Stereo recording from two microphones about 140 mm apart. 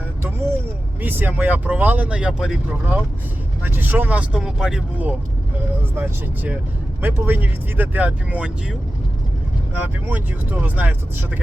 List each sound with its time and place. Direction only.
0.2 s vehicle: 15° right (ahead or behind)
1.0 s speech: 15° right (ahead or behind)
9.7 s speech: 10° right (ahead or behind)